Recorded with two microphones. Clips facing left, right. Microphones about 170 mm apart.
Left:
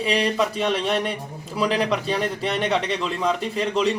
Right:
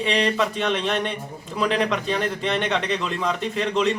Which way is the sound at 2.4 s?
35° left (ahead or behind).